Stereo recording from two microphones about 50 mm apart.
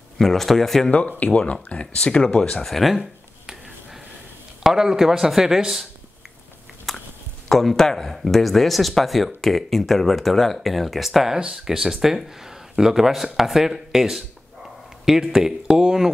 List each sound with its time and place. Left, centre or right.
0.2 s speech: centre
0.8 s speech: left
2.6 s speech: centre
4.6 s speech: centre
6.9 s a sound: centre
7.4 s speech: centre